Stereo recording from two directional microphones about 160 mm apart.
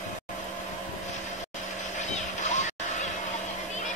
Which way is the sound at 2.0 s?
50° left (ahead or behind).